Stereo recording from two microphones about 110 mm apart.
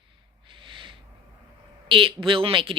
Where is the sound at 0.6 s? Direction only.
50° right (ahead or behind).